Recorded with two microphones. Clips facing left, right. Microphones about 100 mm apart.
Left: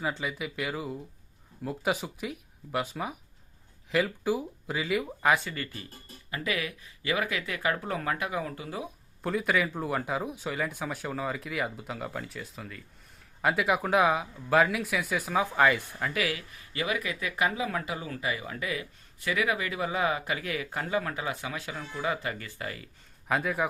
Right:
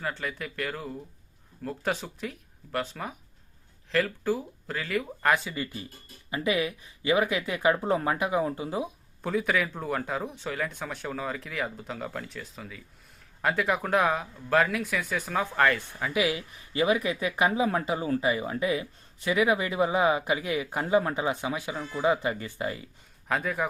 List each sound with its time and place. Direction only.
0.0 s speech: 10° left (ahead or behind)
6.3 s speech: 20° right (ahead or behind)
9.2 s speech: centre (ahead or behind)
16.1 s speech: 20° right (ahead or behind)
23.3 s speech: centre (ahead or behind)